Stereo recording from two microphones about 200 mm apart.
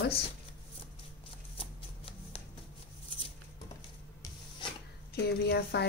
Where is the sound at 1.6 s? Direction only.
30° left (ahead or behind).